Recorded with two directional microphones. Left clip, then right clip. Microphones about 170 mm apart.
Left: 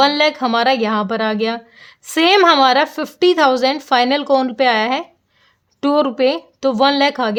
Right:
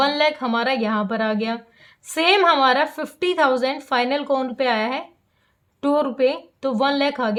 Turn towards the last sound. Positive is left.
turn(degrees=45)  # may be behind; listen again after turning